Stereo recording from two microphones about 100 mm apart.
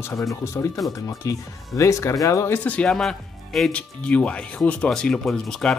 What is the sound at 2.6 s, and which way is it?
Speech, 10° left (ahead or behind).